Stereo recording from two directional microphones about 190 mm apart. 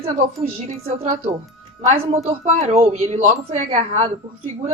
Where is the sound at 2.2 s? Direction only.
35° right (ahead or behind).